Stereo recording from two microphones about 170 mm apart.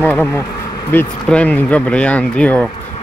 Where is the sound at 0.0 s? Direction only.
10° left (ahead or behind).